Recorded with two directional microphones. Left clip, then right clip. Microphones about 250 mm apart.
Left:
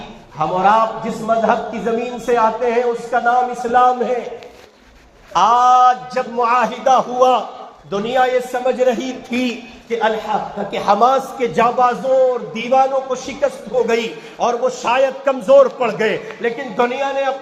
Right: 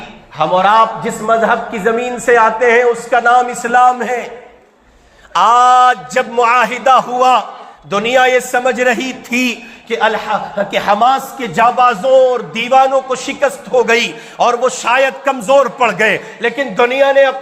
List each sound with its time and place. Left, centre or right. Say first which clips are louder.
0.3 s a man's voice: right 4 dB; right
5.3 s a man's voice: right 3 dB; right